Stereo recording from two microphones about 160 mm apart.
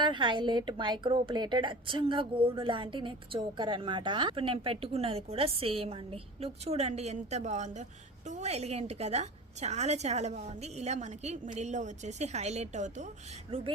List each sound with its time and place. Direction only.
0.0 s a woman's voice: 30° right (ahead or behind); by 13.1 s 45° right (ahead or behind)
13.5 s a woman's voice: 35° right (ahead or behind)